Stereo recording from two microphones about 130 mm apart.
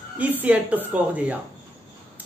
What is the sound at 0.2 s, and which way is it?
Speech, 10° right (ahead or behind).